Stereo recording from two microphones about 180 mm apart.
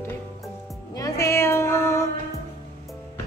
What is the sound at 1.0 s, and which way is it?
Music, 20° left (ahead or behind).